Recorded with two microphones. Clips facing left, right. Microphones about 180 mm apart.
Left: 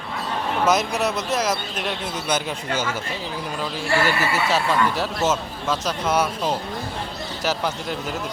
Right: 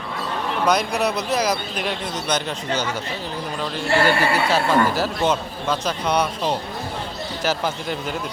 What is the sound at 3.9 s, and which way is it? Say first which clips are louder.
Speech: right 3 dB; 25° right (ahead or behind).